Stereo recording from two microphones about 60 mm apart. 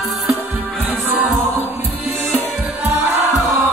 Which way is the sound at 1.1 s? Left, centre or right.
Right.